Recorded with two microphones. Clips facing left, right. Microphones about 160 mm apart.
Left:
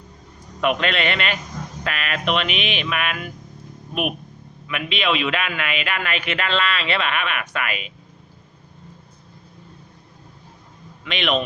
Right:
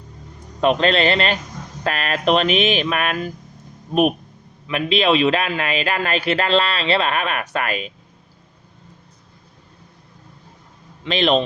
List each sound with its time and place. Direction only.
0.6 s a man's voice: 30° right (ahead or behind)
4.7 s a man's voice: 35° right (ahead or behind)
11.0 s a man's voice: 35° right (ahead or behind)